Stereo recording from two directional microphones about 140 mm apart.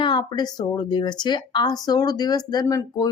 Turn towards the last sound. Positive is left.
turn(degrees=25)  # may be behind; listen again after turning